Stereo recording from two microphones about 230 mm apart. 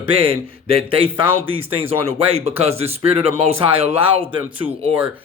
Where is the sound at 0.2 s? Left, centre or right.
Right.